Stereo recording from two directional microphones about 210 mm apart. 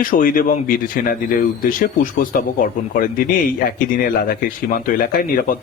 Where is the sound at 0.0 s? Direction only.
40° left (ahead or behind).